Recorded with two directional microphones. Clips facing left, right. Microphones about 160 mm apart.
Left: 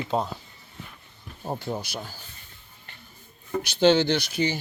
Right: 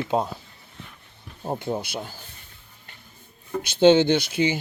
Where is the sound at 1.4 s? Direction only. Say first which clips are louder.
Right 3 dB; 20° right (ahead or behind).